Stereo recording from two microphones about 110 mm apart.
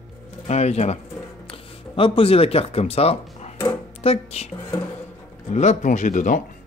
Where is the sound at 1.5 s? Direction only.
55° left (ahead or behind); by 4.5 s 70° left (ahead or behind).